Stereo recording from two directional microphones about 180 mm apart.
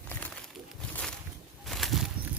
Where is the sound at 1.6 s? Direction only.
Centre (ahead or behind).